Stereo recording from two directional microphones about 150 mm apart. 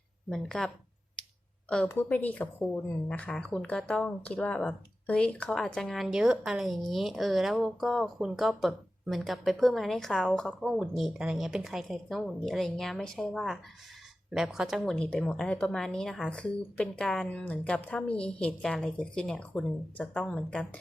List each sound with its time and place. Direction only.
0.3 s speech: 5° left (ahead or behind)
1.9 s a woman's voice: 15° left (ahead or behind)